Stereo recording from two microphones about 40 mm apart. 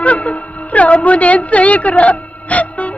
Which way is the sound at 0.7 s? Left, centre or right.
Left.